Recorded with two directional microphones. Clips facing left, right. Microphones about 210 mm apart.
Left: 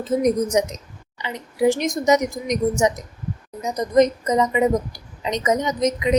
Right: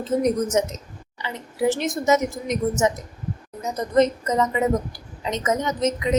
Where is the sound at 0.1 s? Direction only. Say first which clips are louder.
Left 2 dB; 10° left (ahead or behind).